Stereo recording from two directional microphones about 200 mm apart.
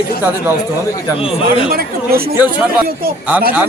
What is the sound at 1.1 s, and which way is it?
Speech, 30° left (ahead or behind).